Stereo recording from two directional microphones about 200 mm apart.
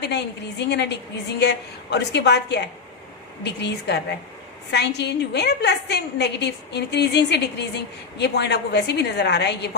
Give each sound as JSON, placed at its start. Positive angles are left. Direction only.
{"t": 0.0, "sound": "a woman's voice", "side_deg": 60}